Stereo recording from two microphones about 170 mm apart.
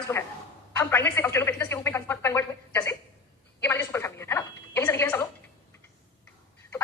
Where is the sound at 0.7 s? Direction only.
15° left (ahead or behind).